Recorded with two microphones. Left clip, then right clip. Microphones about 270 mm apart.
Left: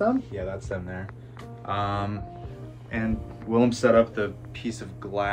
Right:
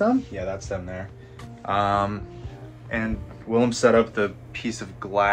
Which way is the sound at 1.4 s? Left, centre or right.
Centre.